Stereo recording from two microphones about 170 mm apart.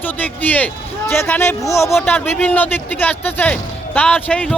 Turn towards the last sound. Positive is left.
turn(degrees=5)  # may be behind; listen again after turning